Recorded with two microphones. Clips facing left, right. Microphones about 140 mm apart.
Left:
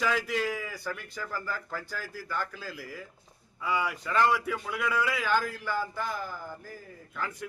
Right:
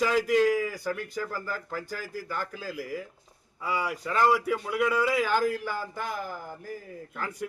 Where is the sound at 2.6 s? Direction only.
45° right (ahead or behind).